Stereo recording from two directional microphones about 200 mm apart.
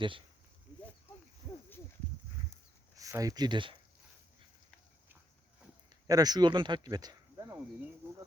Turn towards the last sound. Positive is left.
turn(degrees=-20)  # may be behind; listen again after turning